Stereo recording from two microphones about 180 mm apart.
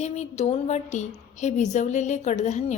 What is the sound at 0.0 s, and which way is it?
A woman's voice, 40° left (ahead or behind).